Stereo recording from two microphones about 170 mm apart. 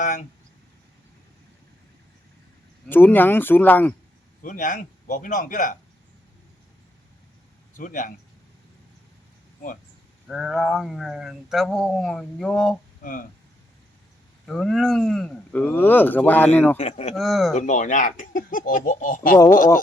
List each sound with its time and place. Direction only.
0.0 s speech: 50° left (ahead or behind)
2.9 s speech: 10° left (ahead or behind)
4.4 s speech: 50° left (ahead or behind)
7.8 s speech: 50° left (ahead or behind)
10.2 s speech: centre (ahead or behind)
13.0 s speech: 55° left (ahead or behind)
14.4 s speech: centre (ahead or behind)
16.7 s speech: 40° left (ahead or behind)
17.2 s speech: centre (ahead or behind)
17.5 s speech: 45° left (ahead or behind)